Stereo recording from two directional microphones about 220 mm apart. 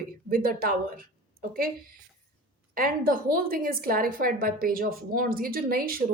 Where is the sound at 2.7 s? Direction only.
40° right (ahead or behind).